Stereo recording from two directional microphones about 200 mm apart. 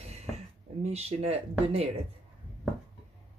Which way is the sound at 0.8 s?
30° right (ahead or behind).